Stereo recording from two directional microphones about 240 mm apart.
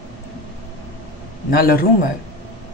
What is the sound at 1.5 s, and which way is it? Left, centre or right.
Speech, left.